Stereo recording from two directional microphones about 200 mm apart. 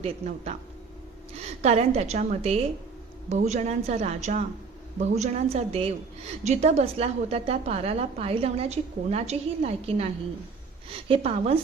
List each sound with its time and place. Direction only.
0.0 s a woman's voice: 35° right (ahead or behind)